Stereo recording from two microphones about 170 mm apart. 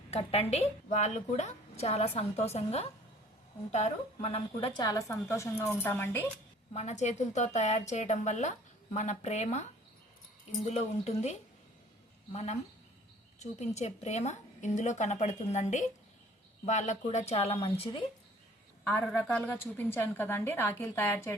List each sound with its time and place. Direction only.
0.1 s a woman's voice: 35° left (ahead or behind)
4.8 s a woman's voice: 20° left (ahead or behind)
6.7 s a woman's voice: 40° left (ahead or behind)
10.7 s a woman's voice: 40° left (ahead or behind)
13.7 s a woman's voice: 40° left (ahead or behind)
18.9 s a woman's voice: 10° left (ahead or behind)